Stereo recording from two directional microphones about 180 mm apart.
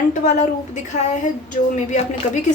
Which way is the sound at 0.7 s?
40° left (ahead or behind).